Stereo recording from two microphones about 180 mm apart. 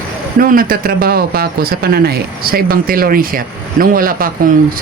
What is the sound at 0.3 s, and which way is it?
Speech, 50° right (ahead or behind).